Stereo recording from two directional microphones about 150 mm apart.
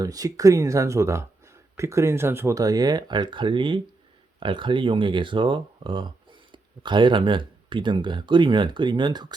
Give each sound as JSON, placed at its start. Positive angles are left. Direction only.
{"t": 0.0, "sound": "speech", "side_deg": -25}